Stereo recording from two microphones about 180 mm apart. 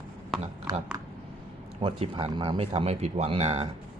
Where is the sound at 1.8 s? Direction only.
30° right (ahead or behind).